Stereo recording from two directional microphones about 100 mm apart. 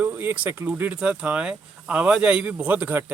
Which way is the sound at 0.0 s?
20° right (ahead or behind).